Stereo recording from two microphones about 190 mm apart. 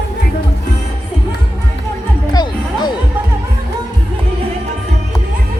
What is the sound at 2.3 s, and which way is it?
Music, 20° left (ahead or behind).